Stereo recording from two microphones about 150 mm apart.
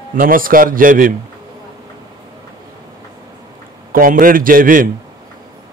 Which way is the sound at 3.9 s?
65° right (ahead or behind).